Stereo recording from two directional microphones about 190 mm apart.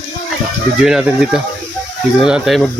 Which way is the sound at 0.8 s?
5° right (ahead or behind).